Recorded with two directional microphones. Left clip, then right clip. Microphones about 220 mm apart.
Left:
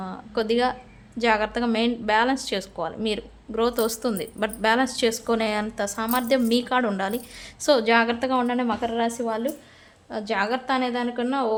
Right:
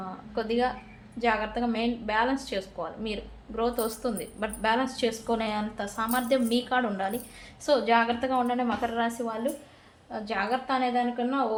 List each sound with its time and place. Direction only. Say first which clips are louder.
0.3 s a woman's voice: left 5 dB; 45° left (ahead or behind)